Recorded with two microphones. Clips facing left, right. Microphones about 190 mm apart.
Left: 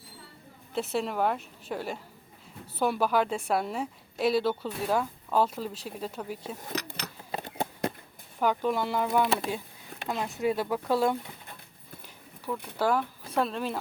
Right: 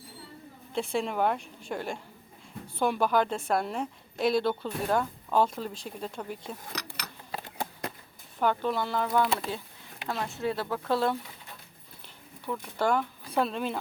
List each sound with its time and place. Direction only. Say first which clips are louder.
0.7 s a woman's voice: even; 5° left (ahead or behind)
6.7 s a sound: left 5 dB; 25° left (ahead or behind)
8.4 s speech: left 1 dB; 10° left (ahead or behind)
12.5 s a woman's voice: even; centre (ahead or behind)